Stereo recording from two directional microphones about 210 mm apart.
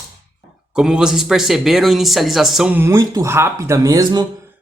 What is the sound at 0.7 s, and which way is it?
Speech, 5° right (ahead or behind).